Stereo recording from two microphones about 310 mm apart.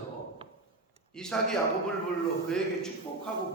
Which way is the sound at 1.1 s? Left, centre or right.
Centre.